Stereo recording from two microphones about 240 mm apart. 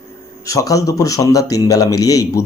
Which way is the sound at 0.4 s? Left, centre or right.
Centre.